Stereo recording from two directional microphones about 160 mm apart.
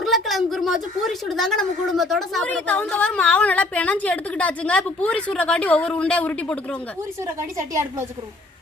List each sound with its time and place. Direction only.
0.0 s a woman's voice: centre (ahead or behind)
7.7 s a woman's voice: 15° right (ahead or behind)